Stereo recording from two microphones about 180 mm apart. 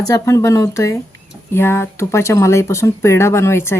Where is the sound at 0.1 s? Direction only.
20° left (ahead or behind).